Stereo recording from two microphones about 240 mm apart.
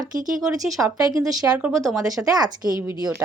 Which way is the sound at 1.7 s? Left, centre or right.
Centre.